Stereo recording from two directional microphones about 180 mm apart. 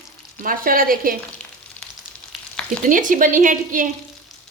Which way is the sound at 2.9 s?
45° right (ahead or behind).